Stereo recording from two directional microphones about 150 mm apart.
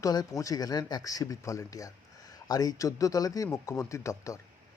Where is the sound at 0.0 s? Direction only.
25° left (ahead or behind).